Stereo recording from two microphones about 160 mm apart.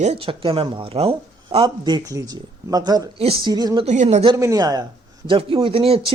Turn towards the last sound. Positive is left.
turn(degrees=-35)  # may be behind; listen again after turning